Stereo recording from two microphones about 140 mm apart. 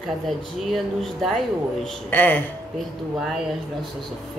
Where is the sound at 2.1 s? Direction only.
15° left (ahead or behind).